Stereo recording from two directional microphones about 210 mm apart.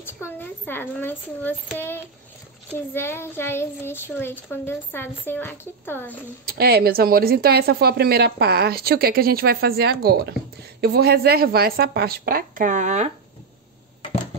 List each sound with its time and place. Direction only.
0.0 s a child's voice: 10° left (ahead or behind)
6.4 s speech: 45° right (ahead or behind)